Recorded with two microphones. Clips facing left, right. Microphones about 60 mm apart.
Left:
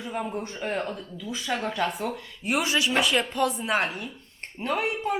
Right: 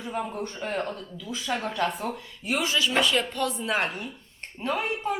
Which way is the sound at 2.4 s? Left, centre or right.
Left.